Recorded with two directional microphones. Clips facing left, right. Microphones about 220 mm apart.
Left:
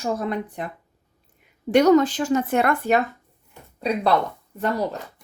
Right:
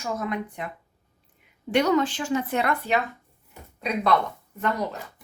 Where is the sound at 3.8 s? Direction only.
35° left (ahead or behind).